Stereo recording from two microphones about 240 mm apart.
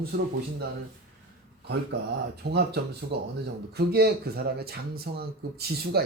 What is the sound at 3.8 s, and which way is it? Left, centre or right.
Speech, right.